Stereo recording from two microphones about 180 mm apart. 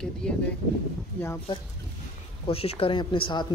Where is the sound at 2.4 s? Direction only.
35° left (ahead or behind).